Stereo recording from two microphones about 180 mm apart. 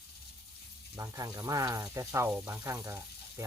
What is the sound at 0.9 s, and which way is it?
Speech, 20° right (ahead or behind).